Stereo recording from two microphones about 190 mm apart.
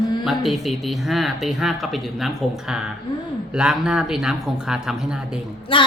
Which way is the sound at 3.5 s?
5° right (ahead or behind).